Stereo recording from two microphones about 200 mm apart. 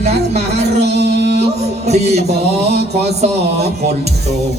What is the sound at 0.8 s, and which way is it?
Music, 55° right (ahead or behind).